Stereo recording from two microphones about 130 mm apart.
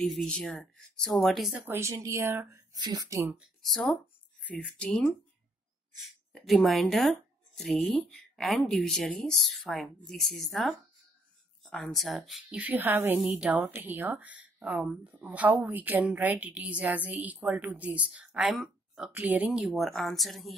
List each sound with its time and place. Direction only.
0.0 s speech: 5° left (ahead or behind)
1.7 s speech: 20° right (ahead or behind)
2.7 s speech: 30° right (ahead or behind)
3.3 s speech: centre (ahead or behind)
6.3 s speech: centre (ahead or behind)